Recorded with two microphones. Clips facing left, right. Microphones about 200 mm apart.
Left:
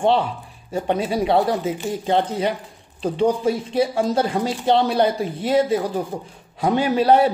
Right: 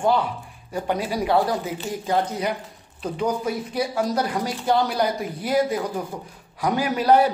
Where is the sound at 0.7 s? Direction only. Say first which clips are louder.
Left 4 dB; 25° left (ahead or behind).